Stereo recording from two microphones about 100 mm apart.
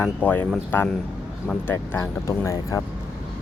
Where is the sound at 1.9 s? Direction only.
30° left (ahead or behind).